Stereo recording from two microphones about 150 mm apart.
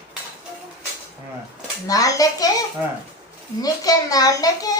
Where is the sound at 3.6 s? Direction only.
25° left (ahead or behind).